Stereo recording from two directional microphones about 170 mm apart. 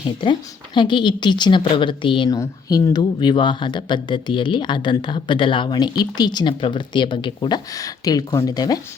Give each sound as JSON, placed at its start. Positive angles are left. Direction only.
{"t": 0.2, "sound": "speech", "side_deg": 25}